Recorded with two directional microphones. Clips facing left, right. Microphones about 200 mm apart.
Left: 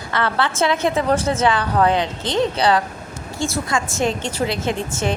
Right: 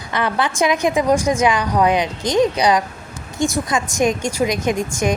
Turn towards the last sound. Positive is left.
turn(degrees=-15)  # may be behind; listen again after turning